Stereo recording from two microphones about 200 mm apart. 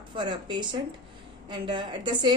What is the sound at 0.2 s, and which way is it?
A woman's voice, 20° right (ahead or behind).